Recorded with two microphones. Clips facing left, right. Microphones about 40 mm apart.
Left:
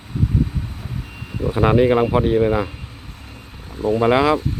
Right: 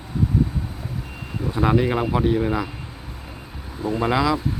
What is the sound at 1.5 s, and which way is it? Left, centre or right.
Speech, left.